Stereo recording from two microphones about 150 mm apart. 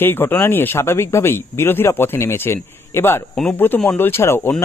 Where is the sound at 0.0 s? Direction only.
15° left (ahead or behind).